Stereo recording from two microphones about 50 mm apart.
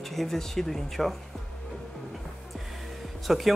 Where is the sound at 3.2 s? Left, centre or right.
Centre.